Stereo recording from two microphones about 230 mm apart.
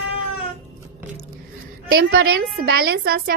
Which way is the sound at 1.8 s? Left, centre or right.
Right.